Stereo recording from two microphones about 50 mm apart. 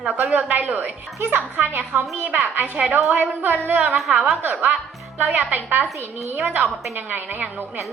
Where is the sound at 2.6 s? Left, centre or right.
Right.